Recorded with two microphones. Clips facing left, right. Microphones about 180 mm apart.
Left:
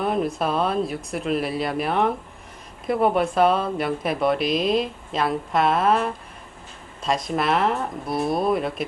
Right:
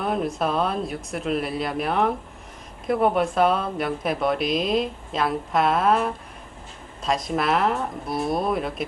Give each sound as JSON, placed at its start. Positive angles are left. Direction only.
{"t": 0.0, "sound": "speech", "side_deg": 0}